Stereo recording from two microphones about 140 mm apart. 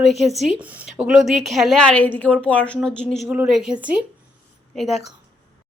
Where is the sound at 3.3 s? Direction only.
5° right (ahead or behind).